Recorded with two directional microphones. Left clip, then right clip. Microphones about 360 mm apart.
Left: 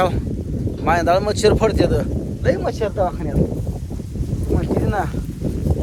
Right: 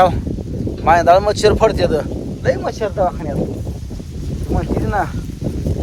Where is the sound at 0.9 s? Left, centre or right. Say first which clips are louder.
Right 6 dB; centre.